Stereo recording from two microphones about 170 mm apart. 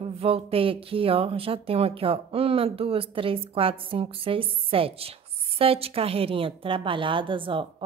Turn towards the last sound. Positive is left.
turn(degrees=-30)  # may be behind; listen again after turning